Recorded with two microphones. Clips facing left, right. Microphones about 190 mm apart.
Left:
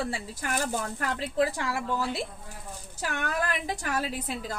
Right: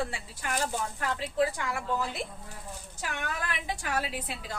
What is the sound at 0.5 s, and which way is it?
Speech, 50° left (ahead or behind).